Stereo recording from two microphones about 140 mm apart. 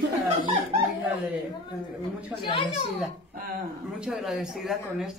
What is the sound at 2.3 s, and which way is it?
Speech, 35° left (ahead or behind).